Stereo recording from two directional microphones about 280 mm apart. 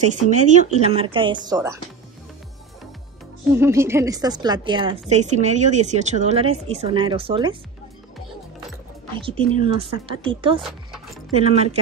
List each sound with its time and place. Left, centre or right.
0.0 s speech: right
3.5 s speech: centre
9.2 s speech: centre